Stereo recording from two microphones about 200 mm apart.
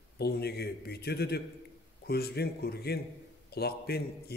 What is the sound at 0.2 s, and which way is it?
A man's voice, 55° left (ahead or behind).